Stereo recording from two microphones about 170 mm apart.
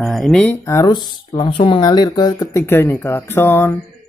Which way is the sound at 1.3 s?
30° left (ahead or behind).